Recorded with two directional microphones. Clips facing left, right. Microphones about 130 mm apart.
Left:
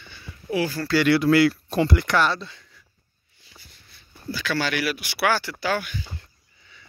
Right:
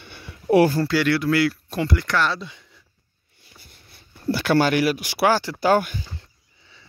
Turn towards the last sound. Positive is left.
turn(degrees=-45)  # may be behind; listen again after turning